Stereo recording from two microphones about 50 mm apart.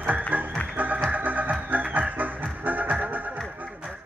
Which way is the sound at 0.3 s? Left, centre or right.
Right.